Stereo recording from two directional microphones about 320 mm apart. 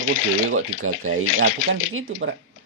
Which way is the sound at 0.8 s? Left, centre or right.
Right.